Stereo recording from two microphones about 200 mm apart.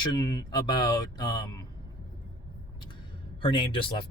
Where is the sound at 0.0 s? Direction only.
20° left (ahead or behind).